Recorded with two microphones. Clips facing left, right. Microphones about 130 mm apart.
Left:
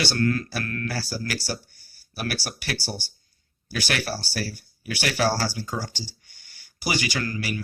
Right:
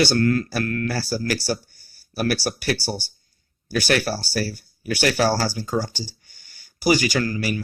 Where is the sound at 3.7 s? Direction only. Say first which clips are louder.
Right 7 dB; 45° right (ahead or behind); by 5.9 s 30° right (ahead or behind).